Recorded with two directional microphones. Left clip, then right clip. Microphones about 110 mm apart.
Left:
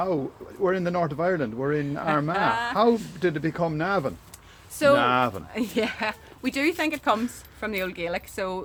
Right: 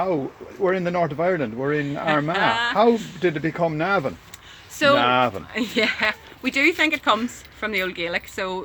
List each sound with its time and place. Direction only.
0.0 s speech: 25° right (ahead or behind)
2.3 s speech: 30° left (ahead or behind)
3.2 s speech: 25° right (ahead or behind)
5.5 s speech: 40° left (ahead or behind)